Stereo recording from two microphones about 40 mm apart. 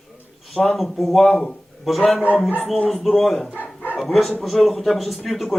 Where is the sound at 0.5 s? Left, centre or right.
Centre.